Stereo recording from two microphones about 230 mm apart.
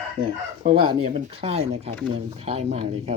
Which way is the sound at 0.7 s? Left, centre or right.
Right.